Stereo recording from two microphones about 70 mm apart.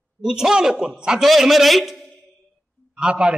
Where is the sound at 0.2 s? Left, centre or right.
Centre.